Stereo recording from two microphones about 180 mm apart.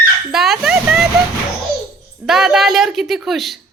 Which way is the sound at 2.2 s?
Centre (ahead or behind).